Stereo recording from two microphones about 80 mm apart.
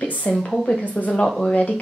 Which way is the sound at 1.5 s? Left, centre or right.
Centre.